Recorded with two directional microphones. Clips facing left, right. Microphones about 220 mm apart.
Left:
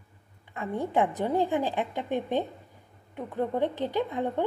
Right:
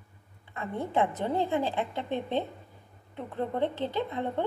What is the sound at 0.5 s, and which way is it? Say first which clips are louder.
A woman's voice: left 2 dB; 15° left (ahead or behind).